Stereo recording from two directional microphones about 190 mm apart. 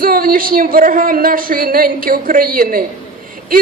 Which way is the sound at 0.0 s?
50° right (ahead or behind).